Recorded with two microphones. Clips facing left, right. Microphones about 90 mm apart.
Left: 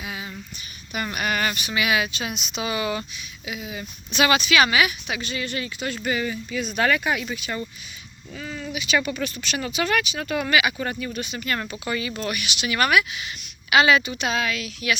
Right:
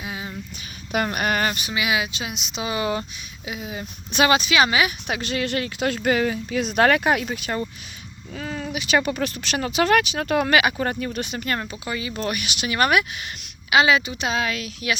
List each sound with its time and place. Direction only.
0.0 s a sound: 25° right (ahead or behind)
1.0 s speech: 45° right (ahead or behind)
1.7 s speech: 15° right (ahead or behind)
5.0 s speech: 60° right (ahead or behind)
11.1 s speech: 60° right (ahead or behind)
11.6 s speech: 20° right (ahead or behind)
12.1 s speech: 40° right (ahead or behind)
13.7 s speech: 20° right (ahead or behind); by 14.9 s 40° right (ahead or behind)